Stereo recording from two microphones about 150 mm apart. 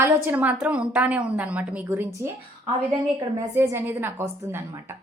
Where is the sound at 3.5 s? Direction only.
15° right (ahead or behind).